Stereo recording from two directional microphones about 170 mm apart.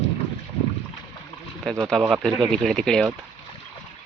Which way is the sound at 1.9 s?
Centre (ahead or behind).